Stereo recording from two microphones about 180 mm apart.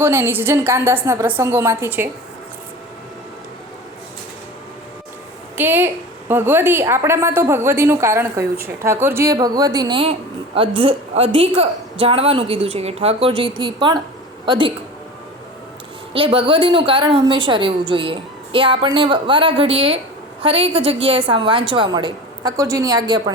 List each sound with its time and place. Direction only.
0.0 s a woman's voice: 15° right (ahead or behind)
5.5 s a woman's voice: 10° right (ahead or behind); by 14.7 s 25° right (ahead or behind)
16.1 s a woman's voice: 30° right (ahead or behind)